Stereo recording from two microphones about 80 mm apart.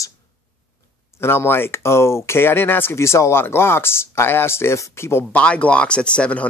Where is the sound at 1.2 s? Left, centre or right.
Left.